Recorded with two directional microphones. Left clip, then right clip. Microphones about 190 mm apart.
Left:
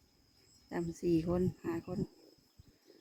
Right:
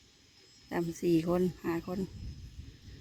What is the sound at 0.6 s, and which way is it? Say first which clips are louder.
Speech: right 4 dB; 5° right (ahead or behind).